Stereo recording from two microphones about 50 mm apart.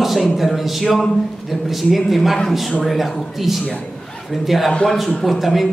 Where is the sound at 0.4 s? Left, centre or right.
Centre.